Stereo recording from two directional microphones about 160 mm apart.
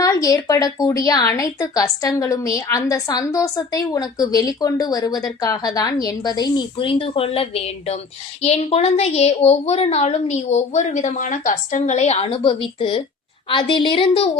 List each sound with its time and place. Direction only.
0.0 s a woman's voice: 20° left (ahead or behind)